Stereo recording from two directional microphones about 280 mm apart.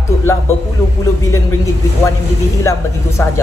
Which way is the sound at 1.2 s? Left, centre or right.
Centre.